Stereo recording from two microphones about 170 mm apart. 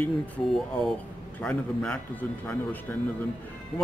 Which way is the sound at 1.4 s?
5° left (ahead or behind).